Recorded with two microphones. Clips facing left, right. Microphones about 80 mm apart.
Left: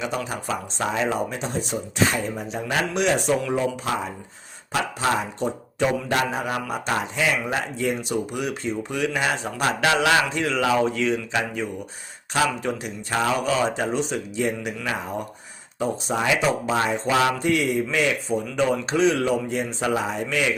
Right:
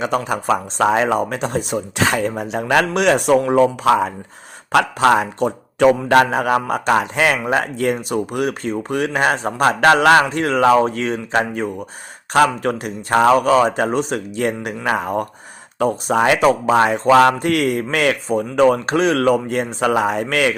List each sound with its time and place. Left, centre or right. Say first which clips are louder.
0.3 s a man's voice: right 9 dB; right